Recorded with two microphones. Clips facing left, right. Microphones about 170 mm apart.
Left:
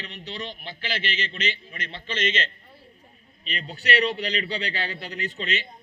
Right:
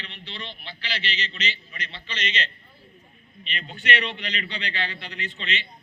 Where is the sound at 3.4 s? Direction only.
35° left (ahead or behind).